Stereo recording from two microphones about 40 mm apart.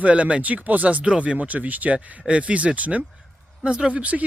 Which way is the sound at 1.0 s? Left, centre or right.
Right.